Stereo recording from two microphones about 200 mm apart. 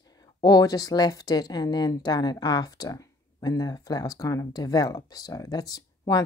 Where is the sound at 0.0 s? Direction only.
20° left (ahead or behind).